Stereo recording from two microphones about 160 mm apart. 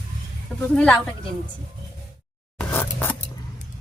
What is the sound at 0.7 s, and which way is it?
Speech, 5° left (ahead or behind).